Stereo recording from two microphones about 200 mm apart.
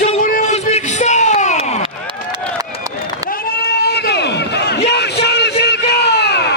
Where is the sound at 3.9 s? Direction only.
55° left (ahead or behind).